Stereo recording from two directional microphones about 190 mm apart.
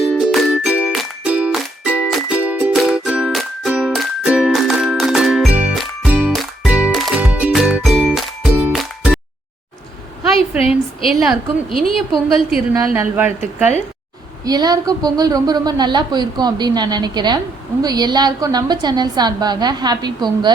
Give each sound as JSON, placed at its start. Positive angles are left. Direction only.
{"t": 0.0, "sound": "music", "side_deg": 0}
{"t": 11.0, "sound": "a woman's voice", "side_deg": 0}
{"t": 12.7, "sound": "a woman's voice", "side_deg": -15}
{"t": 14.4, "sound": "speech", "side_deg": -20}